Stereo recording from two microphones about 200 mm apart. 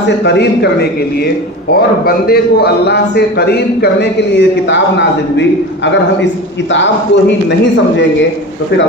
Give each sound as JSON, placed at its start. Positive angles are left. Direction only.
{"t": 0.2, "sound": "a man's voice", "side_deg": 55}
{"t": 2.0, "sound": "a man's voice", "side_deg": 50}
{"t": 6.7, "sound": "a man's voice", "side_deg": 65}